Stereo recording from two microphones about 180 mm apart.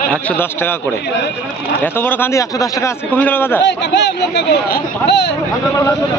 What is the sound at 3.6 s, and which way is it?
Speech, 75° left (ahead or behind).